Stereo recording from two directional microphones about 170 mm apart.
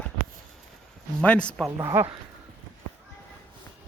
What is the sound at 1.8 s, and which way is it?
Speech, 15° right (ahead or behind).